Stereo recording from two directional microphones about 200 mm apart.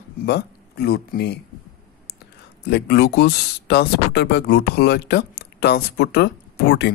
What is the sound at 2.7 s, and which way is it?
Speech, 55° left (ahead or behind).